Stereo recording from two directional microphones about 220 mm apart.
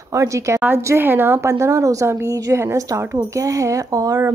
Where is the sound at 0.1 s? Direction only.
15° right (ahead or behind).